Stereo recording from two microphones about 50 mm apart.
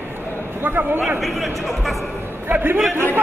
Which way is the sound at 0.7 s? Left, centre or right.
Right.